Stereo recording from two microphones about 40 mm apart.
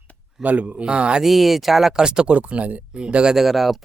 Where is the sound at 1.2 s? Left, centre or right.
Centre.